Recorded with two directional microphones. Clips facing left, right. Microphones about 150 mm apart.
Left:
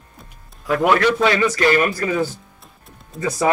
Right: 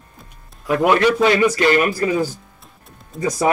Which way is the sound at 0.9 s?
15° right (ahead or behind).